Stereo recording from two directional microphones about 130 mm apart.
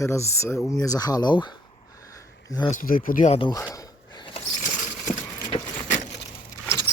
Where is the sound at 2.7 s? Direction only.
90° left.